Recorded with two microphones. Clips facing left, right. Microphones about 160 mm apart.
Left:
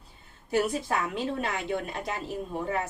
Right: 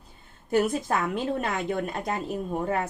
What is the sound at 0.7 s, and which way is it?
A woman's voice, 45° right (ahead or behind).